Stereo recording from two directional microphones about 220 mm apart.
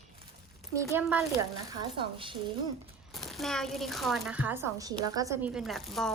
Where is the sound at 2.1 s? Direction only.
25° right (ahead or behind).